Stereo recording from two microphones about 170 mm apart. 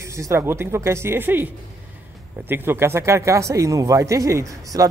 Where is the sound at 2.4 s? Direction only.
15° right (ahead or behind).